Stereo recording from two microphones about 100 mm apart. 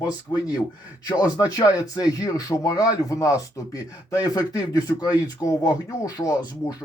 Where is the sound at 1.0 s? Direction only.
40° left (ahead or behind).